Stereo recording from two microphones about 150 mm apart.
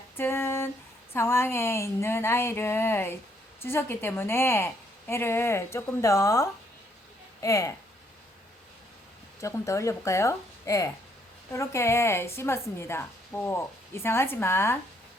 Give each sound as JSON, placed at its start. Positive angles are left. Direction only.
{"t": 0.2, "sound": "a sound", "side_deg": 15}
{"t": 1.1, "sound": "a woman's voice", "side_deg": 15}
{"t": 9.4, "sound": "a woman's voice", "side_deg": 20}